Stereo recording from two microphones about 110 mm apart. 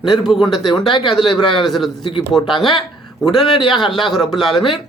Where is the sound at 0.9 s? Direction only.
50° left (ahead or behind).